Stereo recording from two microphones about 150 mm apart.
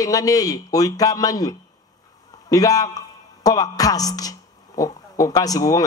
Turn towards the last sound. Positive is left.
turn(degrees=25)  # may be behind; listen again after turning